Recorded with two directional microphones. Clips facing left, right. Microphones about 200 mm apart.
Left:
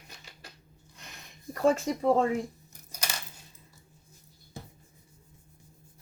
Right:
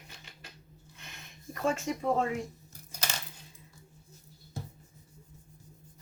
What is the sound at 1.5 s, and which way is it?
Speech, 35° left (ahead or behind).